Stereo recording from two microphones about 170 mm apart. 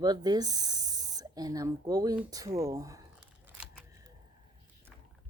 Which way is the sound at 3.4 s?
10° right (ahead or behind).